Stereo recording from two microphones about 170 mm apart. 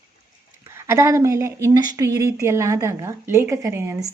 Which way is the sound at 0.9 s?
15° right (ahead or behind).